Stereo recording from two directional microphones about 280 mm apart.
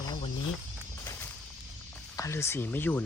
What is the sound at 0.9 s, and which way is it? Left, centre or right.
Music, centre.